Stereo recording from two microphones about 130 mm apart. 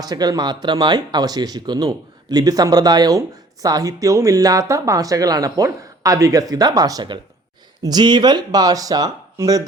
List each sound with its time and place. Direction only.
0.0 s speech: 30° right (ahead or behind)